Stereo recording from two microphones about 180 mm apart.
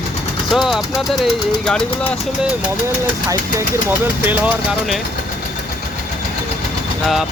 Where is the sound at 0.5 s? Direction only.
Centre (ahead or behind).